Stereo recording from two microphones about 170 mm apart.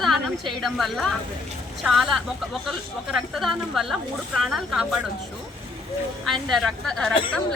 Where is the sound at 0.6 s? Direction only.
Centre (ahead or behind).